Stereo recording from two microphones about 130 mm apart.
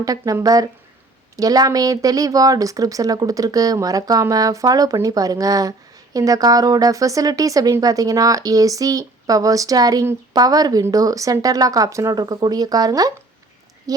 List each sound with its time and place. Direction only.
0.0 s a woman's voice: 25° right (ahead or behind)